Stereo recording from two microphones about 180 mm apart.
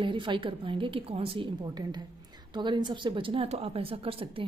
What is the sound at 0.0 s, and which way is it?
A woman's voice, 25° right (ahead or behind).